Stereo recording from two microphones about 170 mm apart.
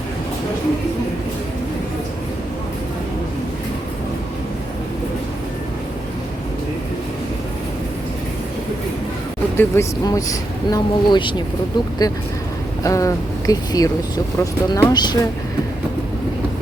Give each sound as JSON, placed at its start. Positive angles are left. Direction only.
{"t": 9.6, "sound": "speech", "side_deg": 20}
{"t": 12.8, "sound": "speech", "side_deg": 20}